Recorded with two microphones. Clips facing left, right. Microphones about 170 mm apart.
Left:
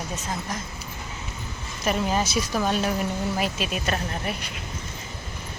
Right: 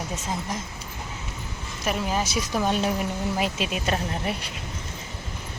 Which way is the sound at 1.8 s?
5° right (ahead or behind).